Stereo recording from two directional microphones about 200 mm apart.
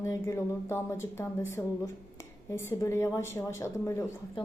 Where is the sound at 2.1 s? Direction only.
15° left (ahead or behind).